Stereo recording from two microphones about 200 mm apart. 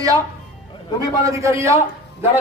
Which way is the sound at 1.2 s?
15° right (ahead or behind).